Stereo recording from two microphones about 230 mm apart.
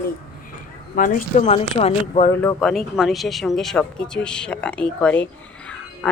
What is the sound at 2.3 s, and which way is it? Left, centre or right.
A woman's voice, centre.